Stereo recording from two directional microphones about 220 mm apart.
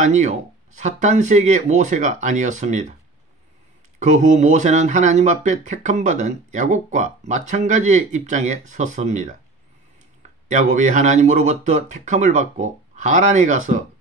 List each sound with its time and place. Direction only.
0.0 s speech: 35° right (ahead or behind)
4.0 s speech: 35° right (ahead or behind)
10.5 s speech: 35° right (ahead or behind)